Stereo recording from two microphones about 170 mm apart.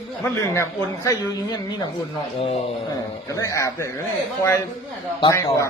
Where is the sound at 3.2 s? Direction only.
20° left (ahead or behind).